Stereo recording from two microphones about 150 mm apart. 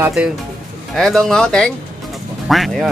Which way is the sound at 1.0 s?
Centre (ahead or behind).